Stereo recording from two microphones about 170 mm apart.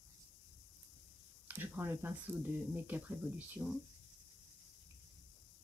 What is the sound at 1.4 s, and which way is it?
Speech, 10° right (ahead or behind).